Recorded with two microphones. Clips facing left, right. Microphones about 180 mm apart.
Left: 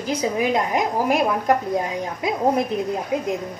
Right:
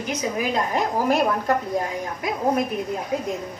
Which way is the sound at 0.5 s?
15° left (ahead or behind).